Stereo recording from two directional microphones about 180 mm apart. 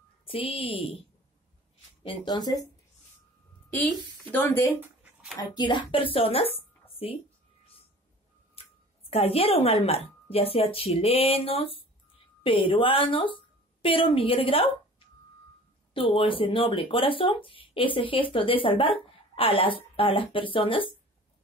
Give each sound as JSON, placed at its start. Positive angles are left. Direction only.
{"t": 0.2, "sound": "a woman's voice", "side_deg": 30}
{"t": 2.0, "sound": "speech", "side_deg": 25}
{"t": 4.2, "sound": "speech", "side_deg": 10}
{"t": 5.4, "sound": "a woman's voice", "side_deg": 25}
{"t": 8.6, "sound": "a sound", "side_deg": 30}
{"t": 9.1, "sound": "a woman's voice", "side_deg": 35}